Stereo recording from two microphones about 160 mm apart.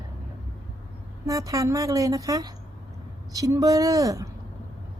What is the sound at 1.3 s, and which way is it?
A woman's voice, 20° right (ahead or behind).